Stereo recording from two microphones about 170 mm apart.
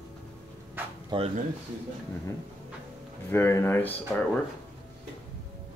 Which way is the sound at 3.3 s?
15° left (ahead or behind).